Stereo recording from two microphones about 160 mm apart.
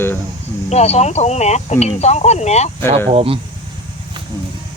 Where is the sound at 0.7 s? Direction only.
40° left (ahead or behind).